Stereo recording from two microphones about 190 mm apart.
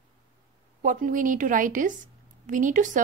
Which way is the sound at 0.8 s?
45° right (ahead or behind).